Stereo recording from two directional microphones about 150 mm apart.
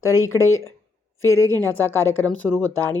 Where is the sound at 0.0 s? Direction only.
20° left (ahead or behind).